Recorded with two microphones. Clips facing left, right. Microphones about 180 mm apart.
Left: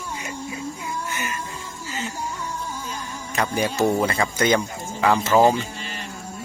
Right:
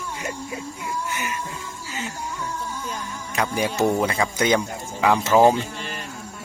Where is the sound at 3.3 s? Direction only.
10° right (ahead or behind).